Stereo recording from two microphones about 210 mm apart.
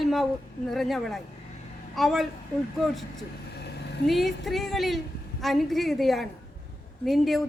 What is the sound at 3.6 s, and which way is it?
Vehicle, 55° left (ahead or behind).